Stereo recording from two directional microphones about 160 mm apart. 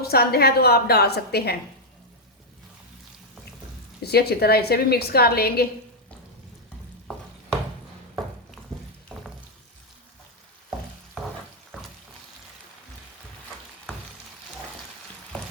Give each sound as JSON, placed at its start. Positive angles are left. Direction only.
{"t": 0.0, "sound": "a woman's voice", "side_deg": 75}
{"t": 4.0, "sound": "a woman's voice", "side_deg": 80}
{"t": 9.1, "sound": "a sound", "side_deg": 5}